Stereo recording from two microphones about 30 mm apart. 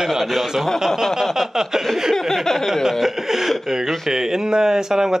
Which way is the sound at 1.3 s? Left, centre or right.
Centre.